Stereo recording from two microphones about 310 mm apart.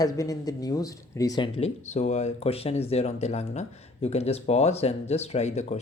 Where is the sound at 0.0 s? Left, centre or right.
Centre.